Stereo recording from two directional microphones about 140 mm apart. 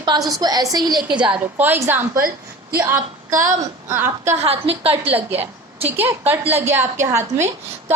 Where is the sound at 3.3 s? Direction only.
65° right (ahead or behind).